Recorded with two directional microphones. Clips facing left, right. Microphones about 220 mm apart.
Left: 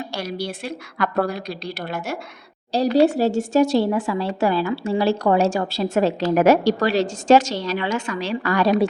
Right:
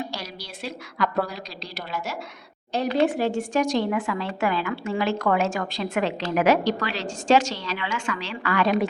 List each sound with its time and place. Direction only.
0.2 s a woman's voice: 50° left (ahead or behind)
2.7 s a woman's voice: 35° left (ahead or behind)